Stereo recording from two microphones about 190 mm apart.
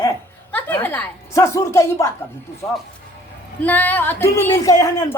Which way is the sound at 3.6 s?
10° left (ahead or behind).